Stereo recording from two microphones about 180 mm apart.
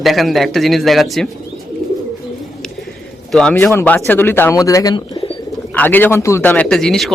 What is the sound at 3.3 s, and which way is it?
A man's voice, 5° left (ahead or behind).